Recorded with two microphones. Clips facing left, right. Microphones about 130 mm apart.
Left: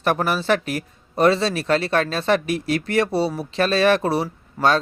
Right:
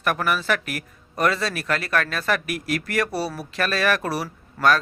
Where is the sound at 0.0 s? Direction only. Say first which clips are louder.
Left 3 dB; 30° left (ahead or behind).